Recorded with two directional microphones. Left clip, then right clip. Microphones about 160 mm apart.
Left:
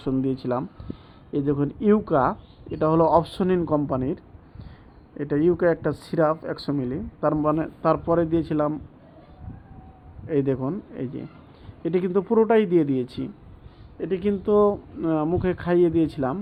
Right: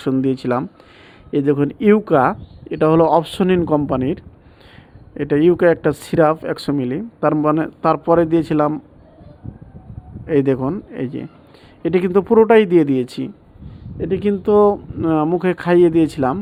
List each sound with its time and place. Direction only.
0.0 s speech: 40° right (ahead or behind)
10.2 s speech: 40° right (ahead or behind)